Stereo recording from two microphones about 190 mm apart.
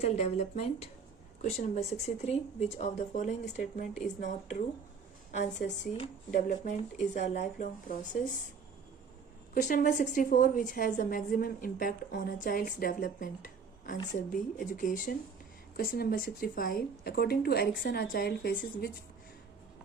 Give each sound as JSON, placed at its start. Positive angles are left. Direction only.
{"t": 0.0, "sound": "speech", "side_deg": 35}
{"t": 9.6, "sound": "a woman's voice", "side_deg": 40}